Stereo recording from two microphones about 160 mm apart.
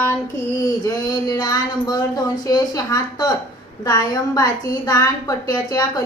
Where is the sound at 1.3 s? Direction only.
25° left (ahead or behind).